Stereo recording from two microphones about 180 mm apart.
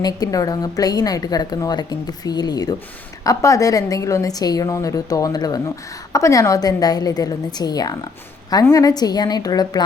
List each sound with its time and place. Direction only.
0.0 s a woman's voice: 20° left (ahead or behind)